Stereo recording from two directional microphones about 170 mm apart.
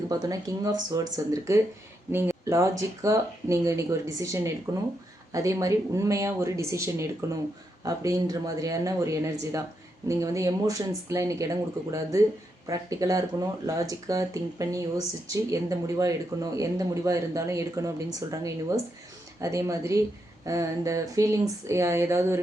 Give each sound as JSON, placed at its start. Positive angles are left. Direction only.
{"t": 0.1, "sound": "speech", "side_deg": -20}